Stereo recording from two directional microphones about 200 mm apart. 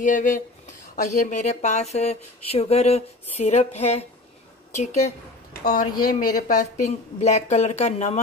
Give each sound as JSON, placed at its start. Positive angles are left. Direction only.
{"t": 0.0, "sound": "speech", "side_deg": 40}
{"t": 5.6, "sound": "speech", "side_deg": 50}
{"t": 6.0, "sound": "speech", "side_deg": 40}